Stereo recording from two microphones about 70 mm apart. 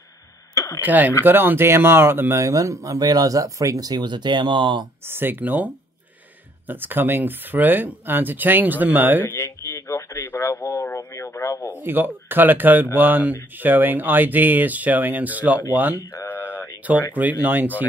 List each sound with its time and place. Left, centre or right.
0.7 s speech: right
2.4 s speech: right
5.0 s speech: right
6.7 s speech: right
9.2 s a sound: left
10.2 s a man's voice: left
11.8 s speech: right
16.4 s a sound: right
17.1 s speech: right